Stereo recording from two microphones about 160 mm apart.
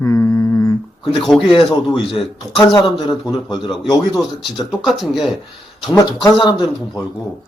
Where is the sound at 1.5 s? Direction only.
30° left (ahead or behind).